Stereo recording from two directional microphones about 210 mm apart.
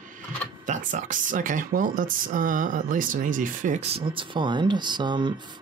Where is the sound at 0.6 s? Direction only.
40° right (ahead or behind).